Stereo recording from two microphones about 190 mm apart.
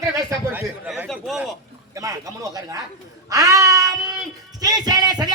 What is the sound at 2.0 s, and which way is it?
Speech, 20° right (ahead or behind).